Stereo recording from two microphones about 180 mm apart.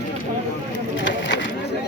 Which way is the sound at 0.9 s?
90° left.